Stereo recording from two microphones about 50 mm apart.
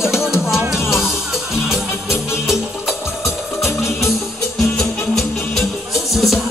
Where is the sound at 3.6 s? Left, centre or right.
Left.